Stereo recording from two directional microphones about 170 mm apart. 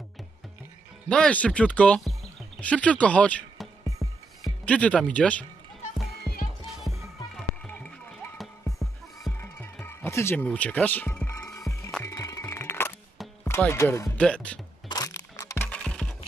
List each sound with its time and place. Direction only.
1.0 s speech: 5° left (ahead or behind)
4.0 s music: centre (ahead or behind)
4.6 s speech: 5° left (ahead or behind)
6.4 s music: centre (ahead or behind)
9.4 s music: 15° left (ahead or behind)
13.5 s speech: 15° left (ahead or behind)
14.9 s a sound: 20° left (ahead or behind); by 16.2 s 5° left (ahead or behind)